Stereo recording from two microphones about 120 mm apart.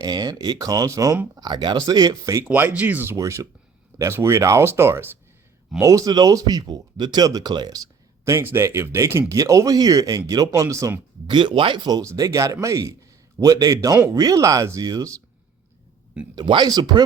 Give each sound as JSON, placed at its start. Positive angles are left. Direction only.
{"t": 0.0, "sound": "a man's voice", "side_deg": -30}
{"t": 1.4, "sound": "a man's voice", "side_deg": -40}
{"t": 2.5, "sound": "speech", "side_deg": -10}
{"t": 11.3, "sound": "a man's voice", "side_deg": -40}
{"t": 16.3, "sound": "a man's voice", "side_deg": -40}